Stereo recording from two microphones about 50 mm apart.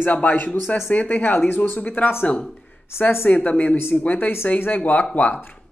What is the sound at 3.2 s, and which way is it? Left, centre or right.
A man's voice, left.